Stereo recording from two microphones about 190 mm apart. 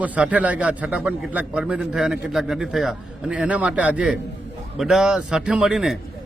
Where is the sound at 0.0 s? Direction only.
5° right (ahead or behind).